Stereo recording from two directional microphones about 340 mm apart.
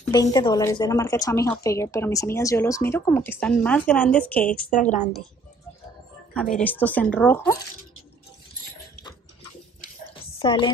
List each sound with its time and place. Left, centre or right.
0.0 s a woman's voice: centre
6.3 s speech: centre
10.4 s a woman's voice: centre